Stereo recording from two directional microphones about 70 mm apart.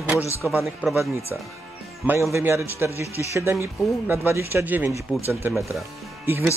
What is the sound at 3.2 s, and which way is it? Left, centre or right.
Speech, right.